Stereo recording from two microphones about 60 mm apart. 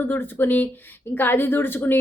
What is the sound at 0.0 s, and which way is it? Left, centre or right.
A woman's voice, left.